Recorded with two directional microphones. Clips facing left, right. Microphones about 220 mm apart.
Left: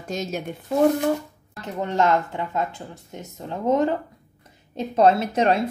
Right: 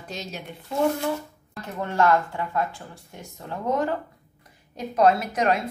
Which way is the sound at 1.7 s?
20° left (ahead or behind).